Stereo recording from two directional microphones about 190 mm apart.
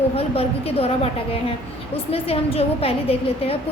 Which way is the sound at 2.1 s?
30° left (ahead or behind).